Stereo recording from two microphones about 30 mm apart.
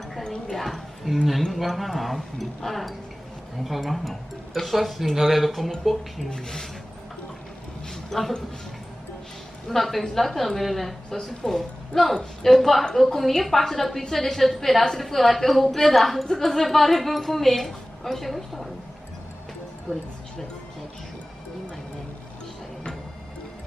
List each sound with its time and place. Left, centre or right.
0.5 s speech: centre
6.3 s speech: left
7.9 s a sound: centre
9.7 s speech: centre
11.1 s a woman's voice: centre